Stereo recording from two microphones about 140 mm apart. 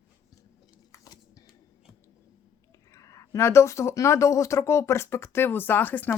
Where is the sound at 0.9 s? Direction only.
25° left (ahead or behind).